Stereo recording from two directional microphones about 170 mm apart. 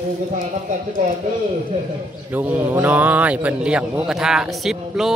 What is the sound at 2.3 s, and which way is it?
Speech, 10° right (ahead or behind).